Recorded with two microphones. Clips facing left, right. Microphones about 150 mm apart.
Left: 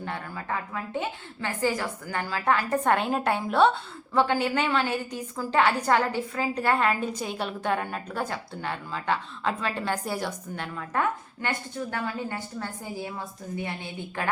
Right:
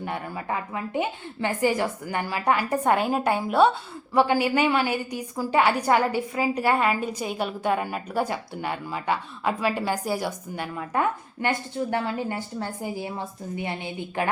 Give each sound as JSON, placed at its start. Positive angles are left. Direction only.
{"t": 0.0, "sound": "a woman's voice", "side_deg": -15}